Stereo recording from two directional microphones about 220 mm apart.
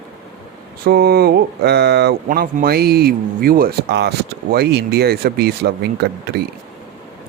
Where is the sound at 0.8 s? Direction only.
45° right (ahead or behind).